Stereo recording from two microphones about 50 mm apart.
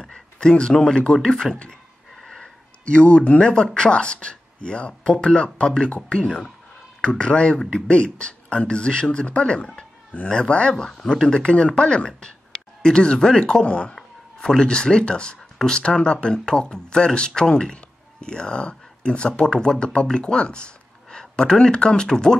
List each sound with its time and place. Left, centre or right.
0.0 s a sound: centre
0.7 s a man's voice: centre
13.9 s speech: centre